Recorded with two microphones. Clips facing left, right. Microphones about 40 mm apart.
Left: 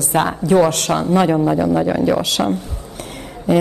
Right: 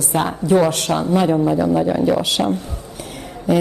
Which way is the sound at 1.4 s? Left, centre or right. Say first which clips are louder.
Left 1 dB; centre.